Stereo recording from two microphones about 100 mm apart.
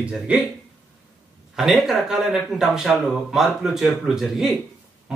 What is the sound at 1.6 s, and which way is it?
Speech, centre (ahead or behind).